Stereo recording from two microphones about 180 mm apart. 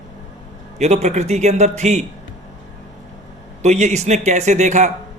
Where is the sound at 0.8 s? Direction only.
40° right (ahead or behind).